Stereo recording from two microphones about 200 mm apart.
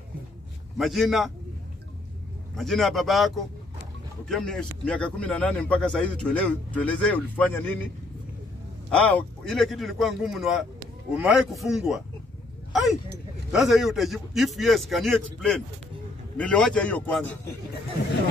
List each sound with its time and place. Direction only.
0.7 s speech: centre (ahead or behind)
2.5 s speech: centre (ahead or behind)
8.9 s speech: 5° left (ahead or behind)
13.5 s a man's voice: centre (ahead or behind)